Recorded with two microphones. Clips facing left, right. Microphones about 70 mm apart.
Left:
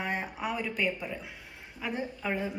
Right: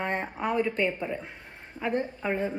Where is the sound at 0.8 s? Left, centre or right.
Right.